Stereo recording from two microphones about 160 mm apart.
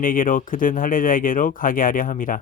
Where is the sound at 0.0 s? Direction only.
60° left (ahead or behind).